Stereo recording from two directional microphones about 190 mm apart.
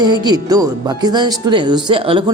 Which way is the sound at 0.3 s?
20° right (ahead or behind).